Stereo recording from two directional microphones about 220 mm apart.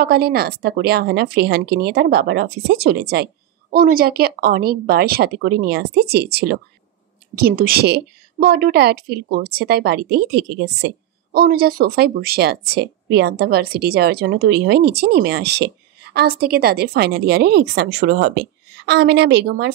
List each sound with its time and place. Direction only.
0.0 s speech: 45° right (ahead or behind)